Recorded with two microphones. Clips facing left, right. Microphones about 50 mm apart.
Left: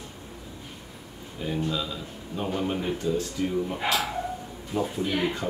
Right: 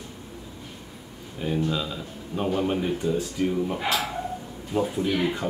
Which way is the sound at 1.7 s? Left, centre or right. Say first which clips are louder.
Right 2 dB; centre.